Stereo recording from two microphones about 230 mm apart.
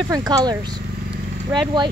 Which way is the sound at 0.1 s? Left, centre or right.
Centre.